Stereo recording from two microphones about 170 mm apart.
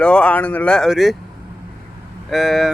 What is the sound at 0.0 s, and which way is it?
Speech, 5° left (ahead or behind).